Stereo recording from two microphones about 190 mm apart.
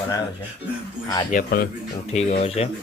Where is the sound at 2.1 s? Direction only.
35° left (ahead or behind).